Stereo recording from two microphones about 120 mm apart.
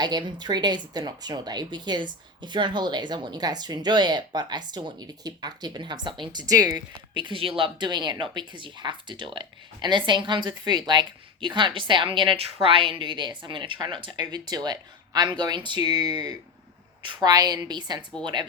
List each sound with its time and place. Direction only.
0.0 s speech: 35° right (ahead or behind)